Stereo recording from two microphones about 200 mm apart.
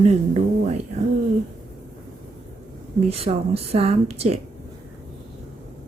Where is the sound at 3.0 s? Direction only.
30° right (ahead or behind).